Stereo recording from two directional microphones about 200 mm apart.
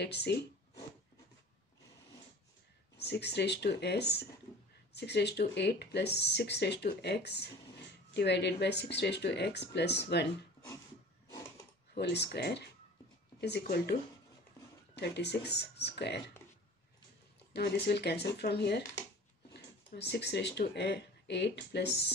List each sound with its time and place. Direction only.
0.0 s speech: 55° left (ahead or behind)
3.0 s speech: 55° left (ahead or behind)
11.9 s speech: 55° left (ahead or behind)
15.0 s speech: 55° left (ahead or behind)
17.5 s speech: 55° left (ahead or behind)